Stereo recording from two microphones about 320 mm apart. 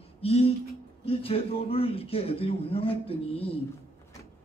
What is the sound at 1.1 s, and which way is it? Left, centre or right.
A man's voice, centre.